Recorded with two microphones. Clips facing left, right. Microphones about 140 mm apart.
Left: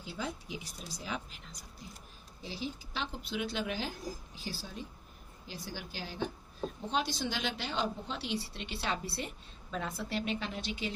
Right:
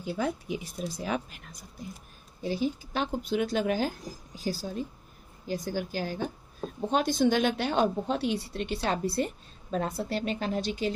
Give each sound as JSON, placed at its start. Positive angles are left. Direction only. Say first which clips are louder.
{"t": 0.0, "sound": "a woman's voice", "louder": "right 9 dB", "side_deg": -55}